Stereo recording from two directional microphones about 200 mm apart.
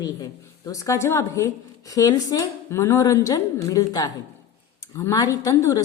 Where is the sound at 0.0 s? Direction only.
20° left (ahead or behind).